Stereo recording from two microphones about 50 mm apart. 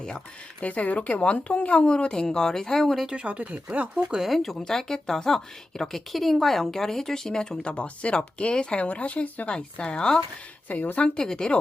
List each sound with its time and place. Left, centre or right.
0.6 s a woman's voice: left; by 2.9 s centre
3.1 s speech: right
4.2 s a woman's voice: centre
10.7 s a woman's voice: left
11.2 s speech: centre